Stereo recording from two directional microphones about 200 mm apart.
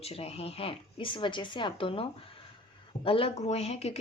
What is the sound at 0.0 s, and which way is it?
Speech, 30° left (ahead or behind).